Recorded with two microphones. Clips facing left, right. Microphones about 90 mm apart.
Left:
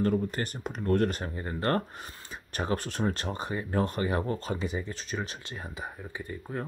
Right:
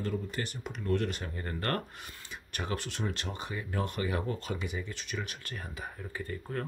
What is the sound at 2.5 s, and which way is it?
Speech, 35° left (ahead or behind).